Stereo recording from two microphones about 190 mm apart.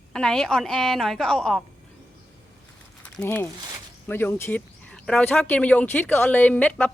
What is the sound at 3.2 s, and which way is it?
Speech, 10° left (ahead or behind).